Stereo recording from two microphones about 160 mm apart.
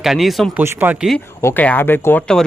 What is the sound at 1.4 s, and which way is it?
Speech, 15° left (ahead or behind).